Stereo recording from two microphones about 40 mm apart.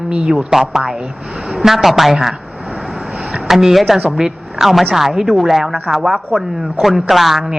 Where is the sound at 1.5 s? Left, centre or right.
Centre.